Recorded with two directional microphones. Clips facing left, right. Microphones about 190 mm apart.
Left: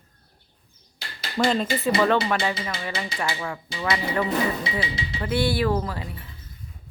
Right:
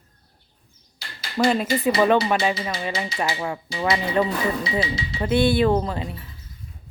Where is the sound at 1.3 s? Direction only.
5° right (ahead or behind); by 6.0 s 25° right (ahead or behind).